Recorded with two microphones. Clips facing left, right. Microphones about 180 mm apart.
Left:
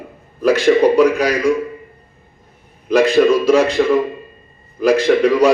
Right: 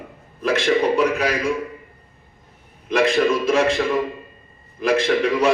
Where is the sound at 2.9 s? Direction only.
35° left (ahead or behind).